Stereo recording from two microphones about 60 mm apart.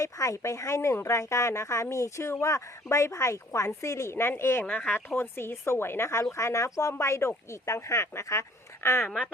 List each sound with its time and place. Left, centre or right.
0.0 s a woman's voice: left
4.6 s a woman's voice: left